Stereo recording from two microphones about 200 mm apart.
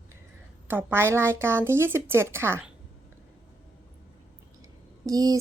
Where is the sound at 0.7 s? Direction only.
10° right (ahead or behind).